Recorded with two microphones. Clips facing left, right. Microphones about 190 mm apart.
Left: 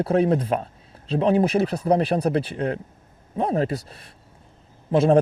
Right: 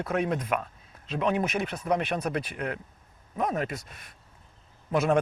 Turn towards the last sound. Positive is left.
turn(degrees=30)  # may be behind; listen again after turning